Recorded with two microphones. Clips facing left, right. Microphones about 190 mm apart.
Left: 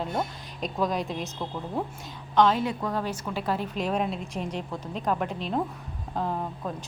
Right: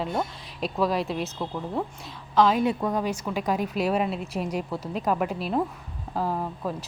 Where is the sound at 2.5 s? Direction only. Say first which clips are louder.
Right 4 dB; 20° right (ahead or behind).